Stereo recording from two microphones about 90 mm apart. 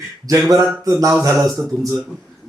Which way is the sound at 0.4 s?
40° right (ahead or behind).